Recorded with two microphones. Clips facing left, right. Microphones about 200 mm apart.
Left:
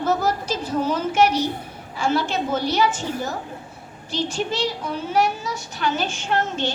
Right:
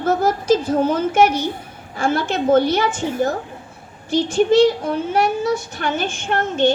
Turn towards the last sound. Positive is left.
turn(degrees=-55)  # may be behind; listen again after turning